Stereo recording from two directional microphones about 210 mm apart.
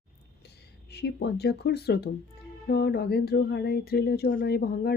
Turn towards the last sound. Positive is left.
turn(degrees=45)  # may be behind; listen again after turning